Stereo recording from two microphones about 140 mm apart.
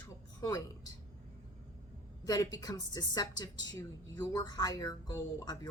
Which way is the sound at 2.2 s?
25° left (ahead or behind).